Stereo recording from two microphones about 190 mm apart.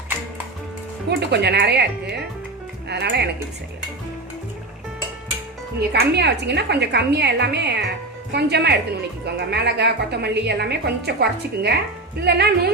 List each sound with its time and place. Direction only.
1.1 s a woman's voice: 65° right (ahead or behind)
5.9 s a woman's voice: 60° right (ahead or behind)